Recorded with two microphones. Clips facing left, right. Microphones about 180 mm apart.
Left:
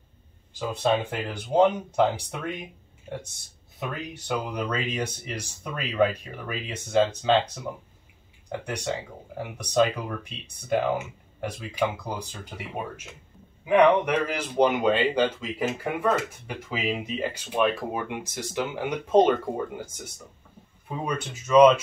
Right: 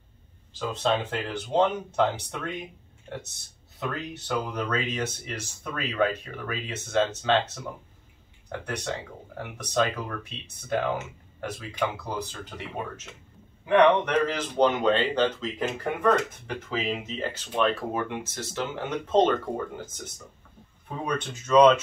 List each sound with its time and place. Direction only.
0.5 s a man's voice: 10° left (ahead or behind)
3.8 s a man's voice: 10° left (ahead or behind)
11.4 s a man's voice: 10° left (ahead or behind)